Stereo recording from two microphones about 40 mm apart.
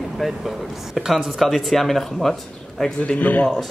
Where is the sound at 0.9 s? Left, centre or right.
Centre.